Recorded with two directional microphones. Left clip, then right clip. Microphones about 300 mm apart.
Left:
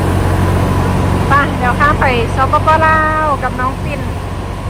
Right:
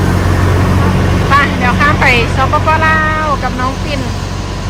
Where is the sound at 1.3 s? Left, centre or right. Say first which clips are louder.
Right 2 dB; centre.